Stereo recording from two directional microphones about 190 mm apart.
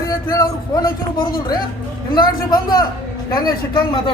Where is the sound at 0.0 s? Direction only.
20° left (ahead or behind).